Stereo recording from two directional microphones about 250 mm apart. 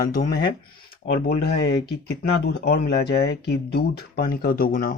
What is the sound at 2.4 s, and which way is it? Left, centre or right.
Speech, left.